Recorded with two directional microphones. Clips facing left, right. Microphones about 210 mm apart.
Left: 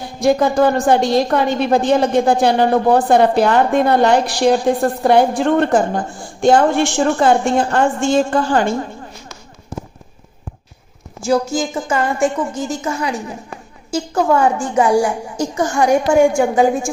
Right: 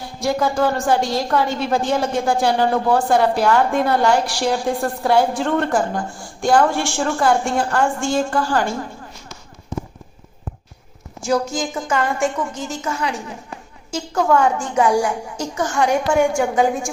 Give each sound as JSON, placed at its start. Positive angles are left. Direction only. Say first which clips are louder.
{"t": 0.0, "sound": "a woman's voice", "louder": "left 6 dB", "side_deg": 20}
{"t": 11.2, "sound": "a woman's voice", "louder": "left 3 dB", "side_deg": 5}